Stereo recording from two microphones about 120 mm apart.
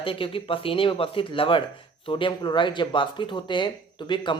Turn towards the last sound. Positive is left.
turn(degrees=40)  # may be behind; listen again after turning